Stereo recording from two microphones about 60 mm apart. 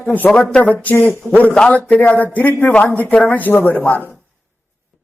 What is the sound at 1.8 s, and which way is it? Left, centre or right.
A man's voice, left.